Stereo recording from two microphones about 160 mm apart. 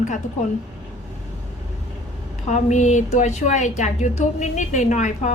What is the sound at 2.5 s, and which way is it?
A woman's voice, 50° left (ahead or behind).